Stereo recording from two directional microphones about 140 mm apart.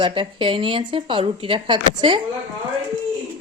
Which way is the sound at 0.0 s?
35° right (ahead or behind).